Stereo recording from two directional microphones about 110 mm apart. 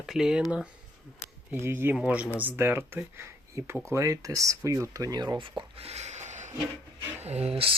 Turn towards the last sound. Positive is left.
turn(degrees=-60)  # may be behind; listen again after turning